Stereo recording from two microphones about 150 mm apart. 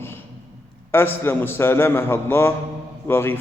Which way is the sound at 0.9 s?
15° left (ahead or behind).